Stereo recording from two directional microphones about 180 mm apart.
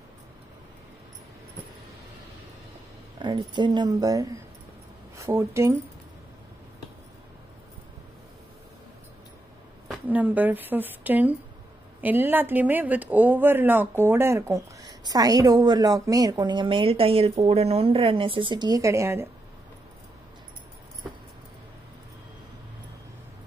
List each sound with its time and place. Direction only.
3.2 s speech: 25° right (ahead or behind)
9.8 s speech: 10° right (ahead or behind)